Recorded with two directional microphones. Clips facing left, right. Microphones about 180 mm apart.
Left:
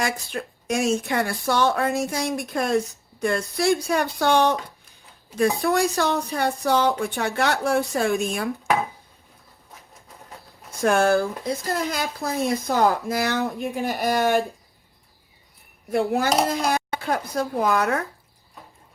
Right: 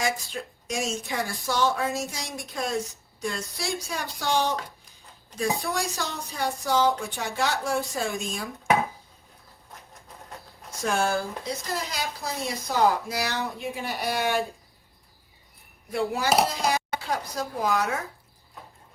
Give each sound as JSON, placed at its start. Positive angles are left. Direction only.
{"t": 0.0, "sound": "speech", "side_deg": 60}
{"t": 5.9, "sound": "speech", "side_deg": 60}
{"t": 10.8, "sound": "speech", "side_deg": 60}
{"t": 15.9, "sound": "speech", "side_deg": 55}